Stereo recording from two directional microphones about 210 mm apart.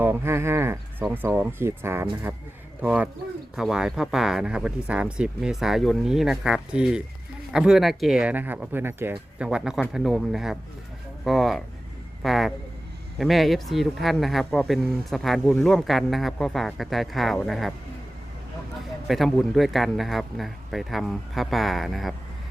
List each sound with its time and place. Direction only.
0.0 s speech: 10° right (ahead or behind)
19.0 s speech: centre (ahead or behind)